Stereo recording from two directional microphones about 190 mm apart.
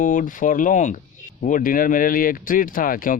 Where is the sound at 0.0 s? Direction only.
45° left (ahead or behind).